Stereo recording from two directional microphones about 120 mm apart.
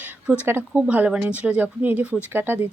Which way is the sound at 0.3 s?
15° right (ahead or behind).